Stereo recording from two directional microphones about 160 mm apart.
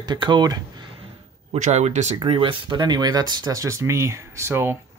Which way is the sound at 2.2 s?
35° right (ahead or behind).